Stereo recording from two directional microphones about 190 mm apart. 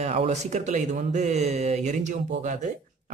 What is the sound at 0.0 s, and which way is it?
Speech, 35° right (ahead or behind).